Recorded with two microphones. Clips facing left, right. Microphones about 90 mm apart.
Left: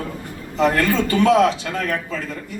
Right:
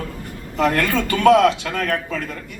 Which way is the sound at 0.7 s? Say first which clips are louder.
Left 2 dB; 60° right (ahead or behind).